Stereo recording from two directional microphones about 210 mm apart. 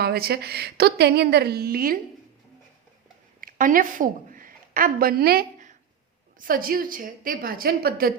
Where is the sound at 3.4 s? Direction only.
40° right (ahead or behind).